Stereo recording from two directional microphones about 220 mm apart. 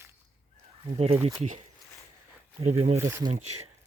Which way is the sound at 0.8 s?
25° right (ahead or behind).